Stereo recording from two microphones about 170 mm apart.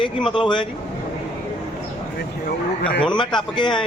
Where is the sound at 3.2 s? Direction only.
25° left (ahead or behind).